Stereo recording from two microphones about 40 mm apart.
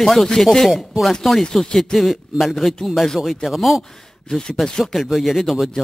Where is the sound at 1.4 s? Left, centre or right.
Centre.